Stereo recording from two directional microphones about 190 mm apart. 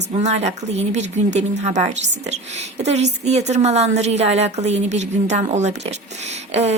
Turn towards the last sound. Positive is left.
turn(degrees=-35)  # may be behind; listen again after turning